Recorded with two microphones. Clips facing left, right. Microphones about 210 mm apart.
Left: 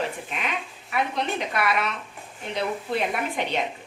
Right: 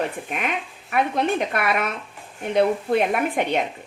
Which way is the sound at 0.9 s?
50° right (ahead or behind).